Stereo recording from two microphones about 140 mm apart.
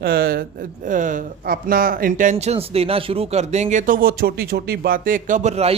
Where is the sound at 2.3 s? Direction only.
50° right (ahead or behind).